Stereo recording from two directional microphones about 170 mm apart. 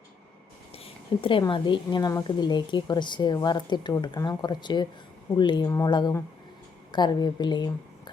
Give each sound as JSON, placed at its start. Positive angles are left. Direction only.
{"t": 0.7, "sound": "a woman's voice", "side_deg": 35}